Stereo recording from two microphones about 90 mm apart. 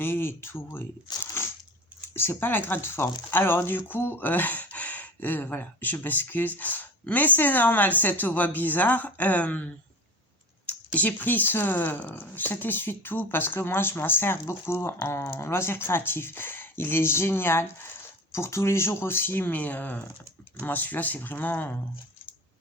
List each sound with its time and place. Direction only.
0.0 s a woman's voice: 25° left (ahead or behind)
1.2 s crunch: 30° left (ahead or behind)
2.1 s a woman's voice: 25° left (ahead or behind)
10.9 s a woman's voice: 20° left (ahead or behind)